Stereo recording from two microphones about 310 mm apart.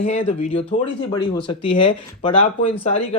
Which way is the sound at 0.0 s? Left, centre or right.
Centre.